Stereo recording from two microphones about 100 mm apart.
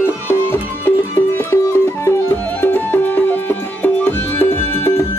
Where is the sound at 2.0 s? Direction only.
20° left (ahead or behind).